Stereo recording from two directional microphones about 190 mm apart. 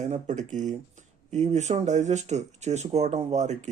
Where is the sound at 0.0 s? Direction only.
40° right (ahead or behind).